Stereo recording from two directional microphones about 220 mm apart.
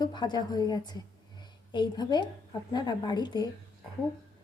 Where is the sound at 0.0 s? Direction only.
20° left (ahead or behind).